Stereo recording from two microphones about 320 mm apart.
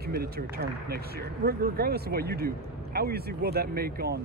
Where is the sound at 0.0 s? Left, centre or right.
Right.